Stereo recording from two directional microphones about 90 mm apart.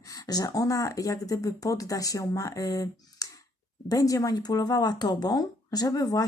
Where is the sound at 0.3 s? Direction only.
45° left (ahead or behind).